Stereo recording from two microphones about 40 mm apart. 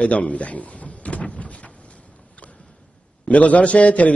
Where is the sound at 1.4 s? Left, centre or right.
Left.